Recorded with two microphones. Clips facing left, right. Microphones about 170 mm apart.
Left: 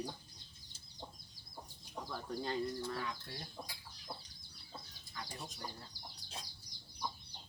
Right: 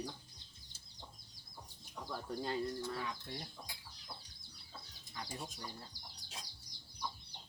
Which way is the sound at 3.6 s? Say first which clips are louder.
Left 3 dB; 50° left (ahead or behind).